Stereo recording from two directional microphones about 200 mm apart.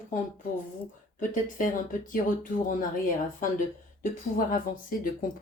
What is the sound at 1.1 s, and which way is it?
Speech, 40° left (ahead or behind).